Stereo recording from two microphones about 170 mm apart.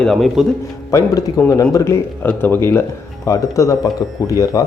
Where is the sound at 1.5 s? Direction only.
20° left (ahead or behind).